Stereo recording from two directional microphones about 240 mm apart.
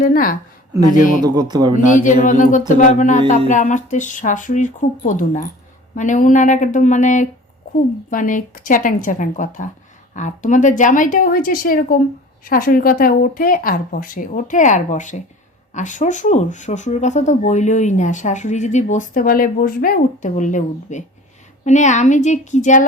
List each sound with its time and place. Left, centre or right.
0.0 s speech: left
1.2 s speech: centre
1.9 s a woman's voice: left